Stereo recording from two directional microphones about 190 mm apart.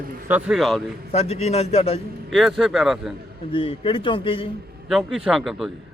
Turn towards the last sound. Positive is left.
turn(degrees=0)  # may be behind; listen again after turning